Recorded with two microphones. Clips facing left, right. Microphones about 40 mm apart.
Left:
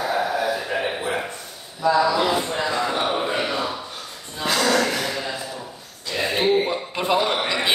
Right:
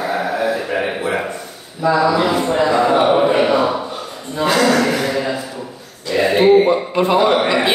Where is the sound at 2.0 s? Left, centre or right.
Right.